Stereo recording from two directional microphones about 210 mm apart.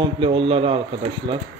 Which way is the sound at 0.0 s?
25° right (ahead or behind).